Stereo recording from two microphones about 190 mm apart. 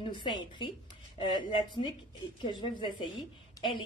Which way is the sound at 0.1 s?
25° left (ahead or behind).